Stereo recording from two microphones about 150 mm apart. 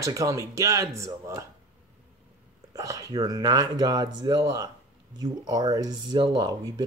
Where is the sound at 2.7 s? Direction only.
20° right (ahead or behind).